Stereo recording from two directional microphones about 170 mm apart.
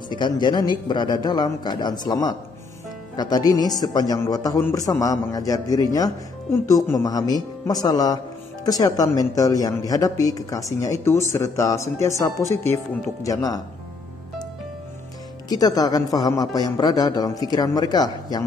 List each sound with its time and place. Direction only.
0.1 s a man's voice: 25° left (ahead or behind)
15.4 s a man's voice: 20° left (ahead or behind)